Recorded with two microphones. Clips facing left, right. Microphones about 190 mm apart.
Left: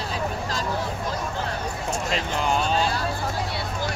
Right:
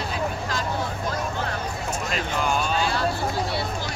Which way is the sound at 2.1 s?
25° left (ahead or behind).